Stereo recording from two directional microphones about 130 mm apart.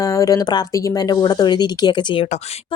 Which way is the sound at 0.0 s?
25° left (ahead or behind).